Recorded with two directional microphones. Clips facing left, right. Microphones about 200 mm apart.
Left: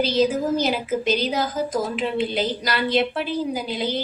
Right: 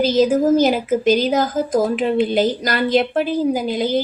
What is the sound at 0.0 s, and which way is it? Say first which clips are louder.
A woman's voice: right 5 dB; 45° right (ahead or behind).